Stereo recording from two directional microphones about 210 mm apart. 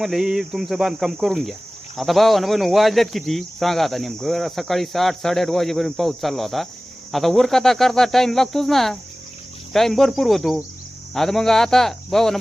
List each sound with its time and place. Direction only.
0.0 s speech: centre (ahead or behind)